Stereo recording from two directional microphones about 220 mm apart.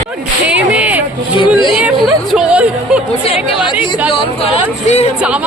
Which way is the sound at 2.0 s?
Centre (ahead or behind).